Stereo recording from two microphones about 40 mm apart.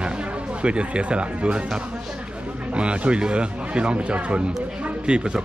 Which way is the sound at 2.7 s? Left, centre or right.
Right.